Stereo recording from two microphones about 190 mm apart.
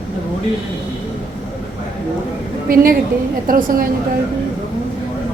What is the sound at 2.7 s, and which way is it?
A woman's voice, 50° right (ahead or behind).